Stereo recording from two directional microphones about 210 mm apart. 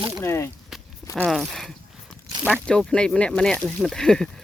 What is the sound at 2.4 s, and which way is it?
Zipper, 10° right (ahead or behind).